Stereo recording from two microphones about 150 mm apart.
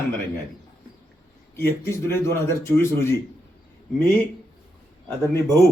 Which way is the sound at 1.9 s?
15° left (ahead or behind).